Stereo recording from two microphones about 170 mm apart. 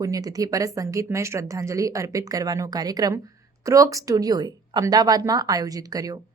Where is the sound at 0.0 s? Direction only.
20° right (ahead or behind).